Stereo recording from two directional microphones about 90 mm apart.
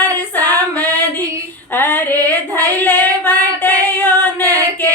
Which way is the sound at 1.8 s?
20° left (ahead or behind).